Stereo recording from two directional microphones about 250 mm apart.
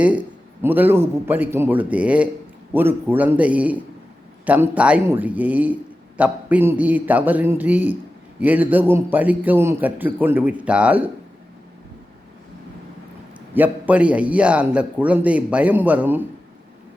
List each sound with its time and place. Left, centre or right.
0.0 s a man's voice: centre
13.5 s a man's voice: centre